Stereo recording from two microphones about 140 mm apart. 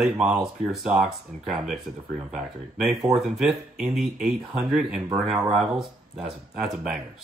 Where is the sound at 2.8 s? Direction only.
Centre (ahead or behind).